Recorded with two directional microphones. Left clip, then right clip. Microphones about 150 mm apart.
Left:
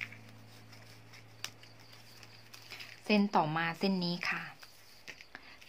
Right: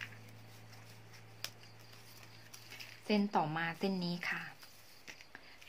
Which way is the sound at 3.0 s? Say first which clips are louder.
Left 4 dB; 25° left (ahead or behind).